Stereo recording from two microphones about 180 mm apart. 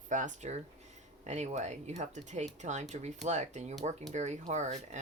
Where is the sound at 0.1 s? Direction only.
45° right (ahead or behind).